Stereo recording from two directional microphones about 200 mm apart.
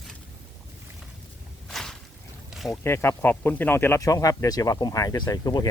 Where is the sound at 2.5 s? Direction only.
Centre (ahead or behind).